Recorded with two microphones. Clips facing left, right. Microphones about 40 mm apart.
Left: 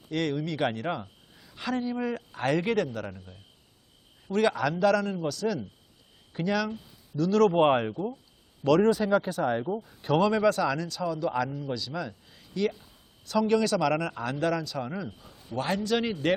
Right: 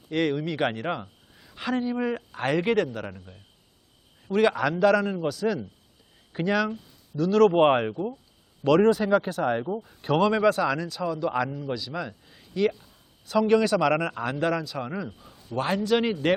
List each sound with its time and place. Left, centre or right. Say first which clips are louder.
0.1 s speech: right 3 dB; centre